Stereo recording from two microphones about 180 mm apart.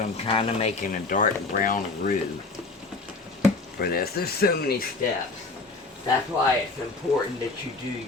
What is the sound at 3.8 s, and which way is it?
Speech, 60° left (ahead or behind).